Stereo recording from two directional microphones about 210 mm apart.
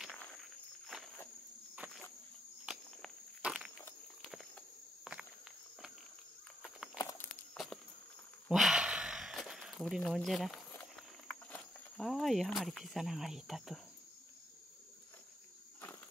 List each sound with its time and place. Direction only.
0.0 s walk: centre (ahead or behind)
1.8 s insect: 10° right (ahead or behind)
2.6 s walk: 5° right (ahead or behind)
3.7 s a sound: 5° left (ahead or behind)
5.1 s insect: centre (ahead or behind)
7.0 s a sound: 15° left (ahead or behind)
7.5 s walk: centre (ahead or behind)
8.5 s a sound: centre (ahead or behind)
11.5 s speech: centre (ahead or behind)